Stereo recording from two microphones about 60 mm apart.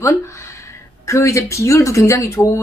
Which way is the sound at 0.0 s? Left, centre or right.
Left.